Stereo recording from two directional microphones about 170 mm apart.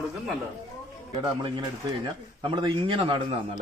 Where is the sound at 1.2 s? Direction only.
25° right (ahead or behind).